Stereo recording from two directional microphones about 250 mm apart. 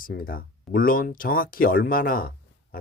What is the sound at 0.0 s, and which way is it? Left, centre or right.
Speech, left.